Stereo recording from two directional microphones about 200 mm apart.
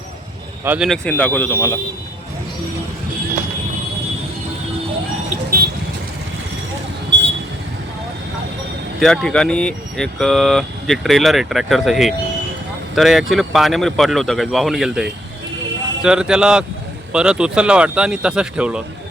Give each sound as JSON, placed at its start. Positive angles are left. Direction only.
{"t": 0.6, "sound": "speech", "side_deg": -10}
{"t": 0.9, "sound": "speech", "side_deg": 5}
{"t": 5.5, "sound": "vehicle", "side_deg": -50}
{"t": 9.0, "sound": "speech", "side_deg": 0}